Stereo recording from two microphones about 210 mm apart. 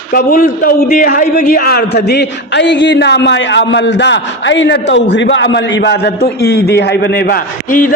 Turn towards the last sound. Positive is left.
turn(degrees=40)  # may be behind; listen again after turning